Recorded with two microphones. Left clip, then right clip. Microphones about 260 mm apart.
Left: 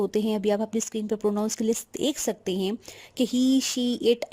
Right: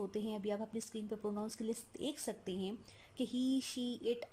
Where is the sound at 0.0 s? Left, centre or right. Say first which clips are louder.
Left 16 dB; left.